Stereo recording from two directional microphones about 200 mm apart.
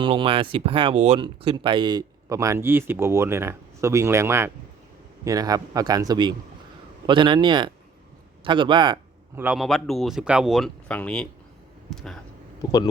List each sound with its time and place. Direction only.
0.0 s speech: 25° right (ahead or behind)
9.3 s speech: 10° right (ahead or behind)